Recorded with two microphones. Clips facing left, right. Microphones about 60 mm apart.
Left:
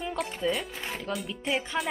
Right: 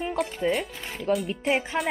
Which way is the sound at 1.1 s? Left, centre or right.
Centre.